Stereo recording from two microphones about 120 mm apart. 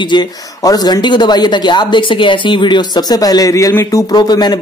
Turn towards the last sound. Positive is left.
turn(degrees=35)  # may be behind; listen again after turning